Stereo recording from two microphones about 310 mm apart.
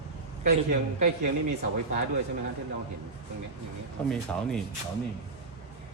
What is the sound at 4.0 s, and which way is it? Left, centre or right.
Speech, centre.